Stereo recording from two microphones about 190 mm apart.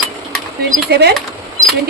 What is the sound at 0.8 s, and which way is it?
Speech, 60° right (ahead or behind).